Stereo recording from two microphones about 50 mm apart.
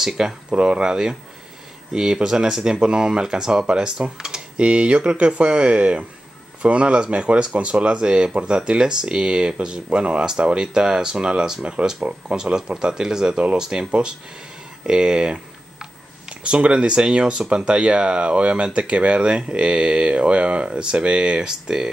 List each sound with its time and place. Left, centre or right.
0.5 s speech: centre